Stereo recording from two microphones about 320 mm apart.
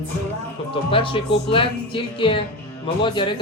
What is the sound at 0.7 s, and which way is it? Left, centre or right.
Speech, centre.